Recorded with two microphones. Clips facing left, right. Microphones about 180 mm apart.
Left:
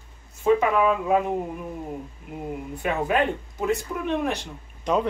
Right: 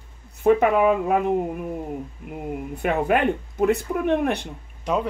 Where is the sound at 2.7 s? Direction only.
60° right (ahead or behind).